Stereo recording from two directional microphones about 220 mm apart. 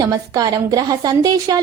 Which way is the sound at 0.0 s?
15° right (ahead or behind).